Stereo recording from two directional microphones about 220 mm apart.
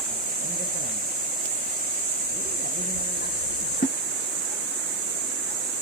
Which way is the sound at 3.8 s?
45° left (ahead or behind).